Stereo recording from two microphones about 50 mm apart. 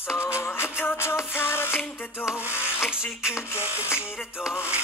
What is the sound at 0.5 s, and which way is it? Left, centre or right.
Music, left.